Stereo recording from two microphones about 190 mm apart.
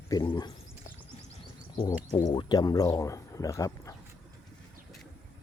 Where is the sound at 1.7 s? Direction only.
20° left (ahead or behind).